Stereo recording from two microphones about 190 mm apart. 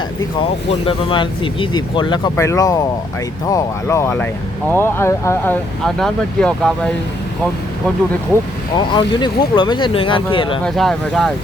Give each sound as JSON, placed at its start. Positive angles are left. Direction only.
{"t": 0.7, "sound": "speech", "side_deg": 30}
{"t": 8.7, "sound": "speech", "side_deg": 25}
{"t": 10.8, "sound": "speech", "side_deg": 5}